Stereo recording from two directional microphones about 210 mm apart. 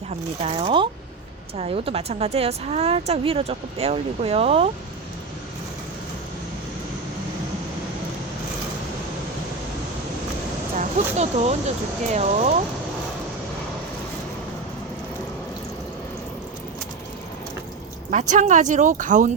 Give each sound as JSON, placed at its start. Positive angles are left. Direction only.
{"t": 0.4, "sound": "speech", "side_deg": -25}
{"t": 10.8, "sound": "speech", "side_deg": -30}
{"t": 18.1, "sound": "speech", "side_deg": -35}